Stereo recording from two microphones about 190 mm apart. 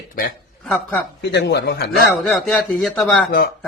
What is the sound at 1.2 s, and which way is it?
Speech, 60° left (ahead or behind).